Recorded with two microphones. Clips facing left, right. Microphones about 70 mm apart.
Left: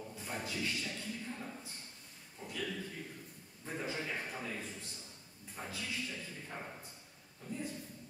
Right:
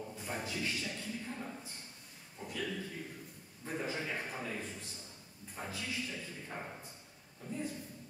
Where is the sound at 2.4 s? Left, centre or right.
Centre.